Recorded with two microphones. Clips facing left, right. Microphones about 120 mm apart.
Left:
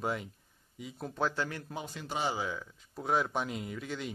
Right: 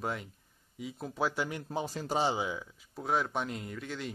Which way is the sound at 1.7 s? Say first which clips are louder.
Right 5 dB; 35° right (ahead or behind).